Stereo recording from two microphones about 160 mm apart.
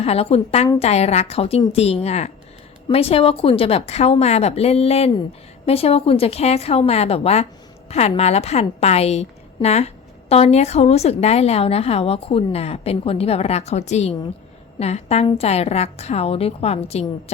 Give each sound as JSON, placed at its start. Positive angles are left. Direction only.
{"t": 0.0, "sound": "a woman's voice", "side_deg": 40}